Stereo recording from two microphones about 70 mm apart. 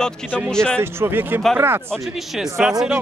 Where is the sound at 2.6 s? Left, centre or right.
Centre.